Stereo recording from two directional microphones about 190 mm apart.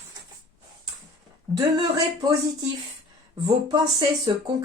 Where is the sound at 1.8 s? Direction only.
20° right (ahead or behind).